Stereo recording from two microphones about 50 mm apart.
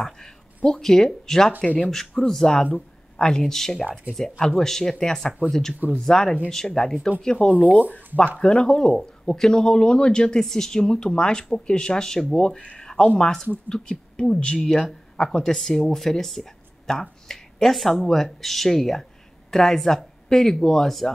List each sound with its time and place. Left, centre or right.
0.7 s speech: centre
8.6 s speech: centre